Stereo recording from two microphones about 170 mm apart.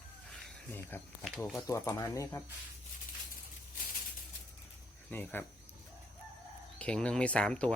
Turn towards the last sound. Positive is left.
turn(degrees=5)  # may be behind; listen again after turning